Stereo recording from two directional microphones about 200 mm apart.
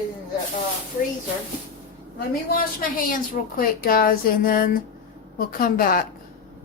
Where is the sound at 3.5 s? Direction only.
45° left (ahead or behind).